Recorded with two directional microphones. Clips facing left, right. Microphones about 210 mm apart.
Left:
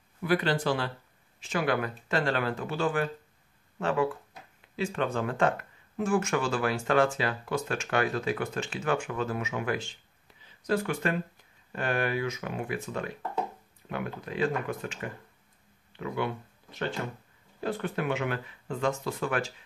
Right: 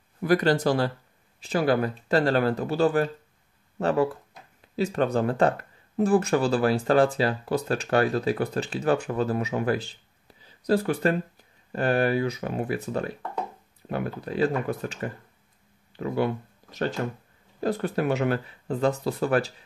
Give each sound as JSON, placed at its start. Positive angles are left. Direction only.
{"t": 0.2, "sound": "speech", "side_deg": -40}
{"t": 15.9, "sound": "a sound", "side_deg": -35}
{"t": 16.6, "sound": "music", "side_deg": -40}
{"t": 17.0, "sound": "speech", "side_deg": -45}